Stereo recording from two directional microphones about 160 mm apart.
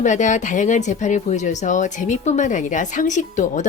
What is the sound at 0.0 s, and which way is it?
Speech, 50° left (ahead or behind).